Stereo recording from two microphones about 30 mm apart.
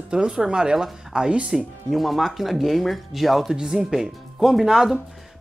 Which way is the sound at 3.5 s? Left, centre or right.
Centre.